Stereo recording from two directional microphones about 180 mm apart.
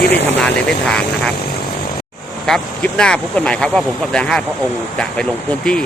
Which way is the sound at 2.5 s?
5° left (ahead or behind).